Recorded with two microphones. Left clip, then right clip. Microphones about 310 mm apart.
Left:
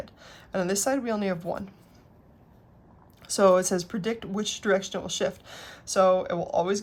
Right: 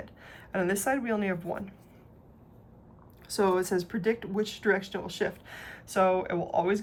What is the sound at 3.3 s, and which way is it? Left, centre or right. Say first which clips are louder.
A woman's voice: left 6 dB; centre.